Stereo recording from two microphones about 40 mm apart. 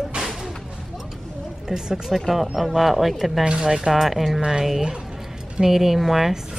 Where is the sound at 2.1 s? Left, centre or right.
Centre.